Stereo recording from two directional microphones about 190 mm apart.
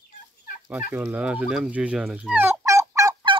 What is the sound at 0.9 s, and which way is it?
Fowl, 5° right (ahead or behind).